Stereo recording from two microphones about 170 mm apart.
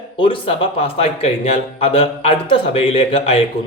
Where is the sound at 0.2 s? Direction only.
30° left (ahead or behind).